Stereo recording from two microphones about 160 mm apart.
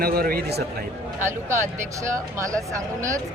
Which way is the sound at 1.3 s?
15° right (ahead or behind).